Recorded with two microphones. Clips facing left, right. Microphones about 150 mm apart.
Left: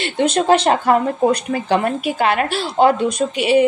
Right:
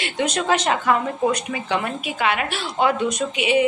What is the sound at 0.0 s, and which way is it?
Speech, 30° left (ahead or behind).